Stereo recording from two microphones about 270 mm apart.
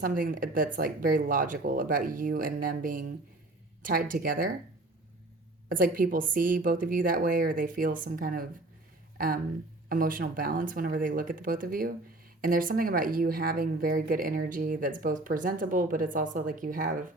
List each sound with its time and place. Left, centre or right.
0.0 s a woman's voice: right
5.7 s a woman's voice: right